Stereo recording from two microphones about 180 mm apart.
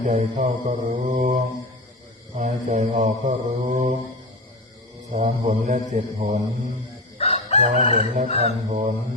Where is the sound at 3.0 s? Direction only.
40° right (ahead or behind).